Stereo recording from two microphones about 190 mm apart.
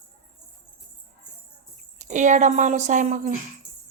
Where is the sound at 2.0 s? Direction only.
40° right (ahead or behind).